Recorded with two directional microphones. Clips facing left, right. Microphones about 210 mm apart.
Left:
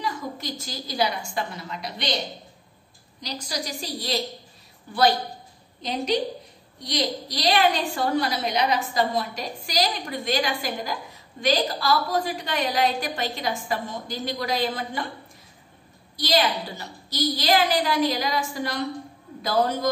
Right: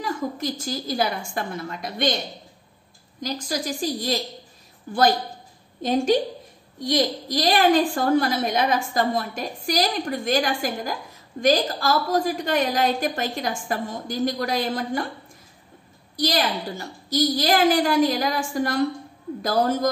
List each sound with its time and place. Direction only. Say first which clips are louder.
0.0 s a woman's voice: right 4 dB; 45° right (ahead or behind)
3.2 s a woman's voice: right 4 dB; 50° right (ahead or behind)
16.2 s a woman's voice: even; 45° right (ahead or behind)